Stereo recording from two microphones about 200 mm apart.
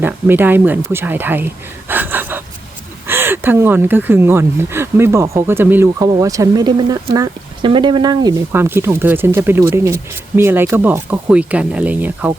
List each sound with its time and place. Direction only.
0.0 s speech: 10° right (ahead or behind)
1.9 s gasp: 10° right (ahead or behind)
3.1 s speech: 10° right (ahead or behind)